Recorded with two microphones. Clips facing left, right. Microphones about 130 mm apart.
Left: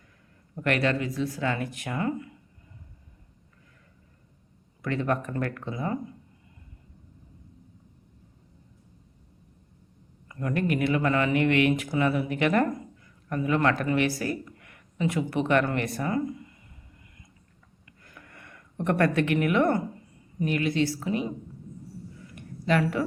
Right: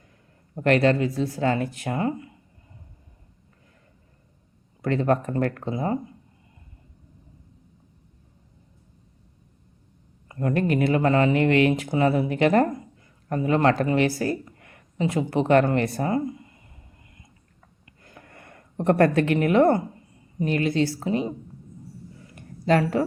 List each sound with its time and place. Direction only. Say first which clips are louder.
0.5 s speech: right 6 dB; 30° right (ahead or behind)
4.8 s speech: right 5 dB; 35° right (ahead or behind)
10.2 s speech: right 4 dB; 35° right (ahead or behind)
18.0 s a sound: right 3 dB; 30° right (ahead or behind)
20.4 s speech: right 3 dB; 30° right (ahead or behind)
22.2 s a sound: right 5 dB; 35° right (ahead or behind)